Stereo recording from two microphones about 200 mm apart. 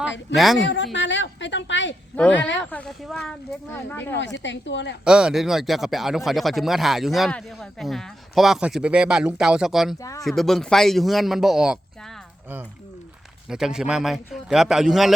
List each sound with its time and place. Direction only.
0.3 s speech: centre (ahead or behind)
0.6 s a woman's voice: 65° left (ahead or behind)
2.1 s speech: 5° left (ahead or behind)
4.4 s a woman's voice: 65° left (ahead or behind)
5.0 s speech: 5° right (ahead or behind)
10.0 s speech: 15° left (ahead or behind)
10.2 s speech: centre (ahead or behind)